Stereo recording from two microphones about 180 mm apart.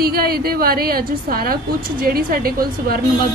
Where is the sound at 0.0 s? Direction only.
55° right (ahead or behind).